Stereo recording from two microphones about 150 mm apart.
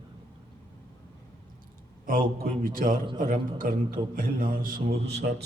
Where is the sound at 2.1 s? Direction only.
80° right.